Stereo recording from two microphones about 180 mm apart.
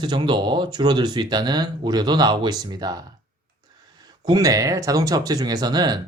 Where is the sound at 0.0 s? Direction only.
25° right (ahead or behind).